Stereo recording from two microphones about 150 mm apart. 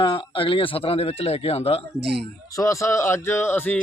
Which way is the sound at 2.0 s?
90° right.